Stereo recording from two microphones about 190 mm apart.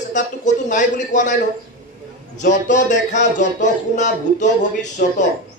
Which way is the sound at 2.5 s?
40° left (ahead or behind).